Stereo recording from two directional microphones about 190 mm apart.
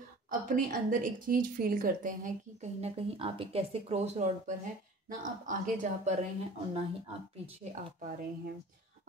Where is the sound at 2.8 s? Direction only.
30° right (ahead or behind).